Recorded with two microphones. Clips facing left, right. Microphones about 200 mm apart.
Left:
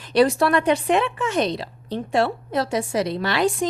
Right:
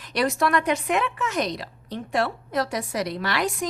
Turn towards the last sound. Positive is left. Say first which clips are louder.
# left 5 dB
turn(degrees=30)  # may be behind; listen again after turning